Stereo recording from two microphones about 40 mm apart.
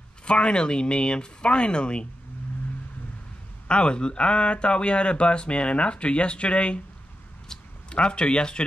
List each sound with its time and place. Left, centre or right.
0.2 s speech: left
3.6 s speech: left
7.5 s a sound: centre
7.9 s speech: left